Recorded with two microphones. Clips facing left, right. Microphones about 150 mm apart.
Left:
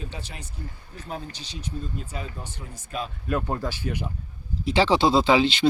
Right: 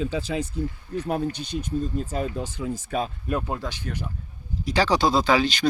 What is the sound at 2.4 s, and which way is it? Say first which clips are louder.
Speech: right 11 dB; 90° right.